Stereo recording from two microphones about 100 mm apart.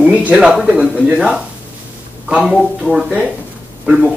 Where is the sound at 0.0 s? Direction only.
10° right (ahead or behind).